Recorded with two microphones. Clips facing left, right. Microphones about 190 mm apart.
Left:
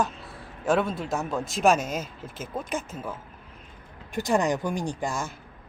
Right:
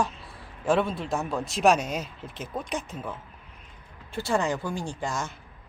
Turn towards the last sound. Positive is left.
turn(degrees=10)  # may be behind; listen again after turning